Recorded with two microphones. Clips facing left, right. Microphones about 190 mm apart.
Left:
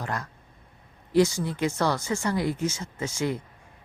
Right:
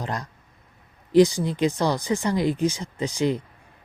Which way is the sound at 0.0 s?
15° right (ahead or behind).